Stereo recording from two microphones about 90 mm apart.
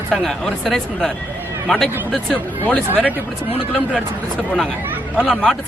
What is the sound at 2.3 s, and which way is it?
Speech, 15° left (ahead or behind).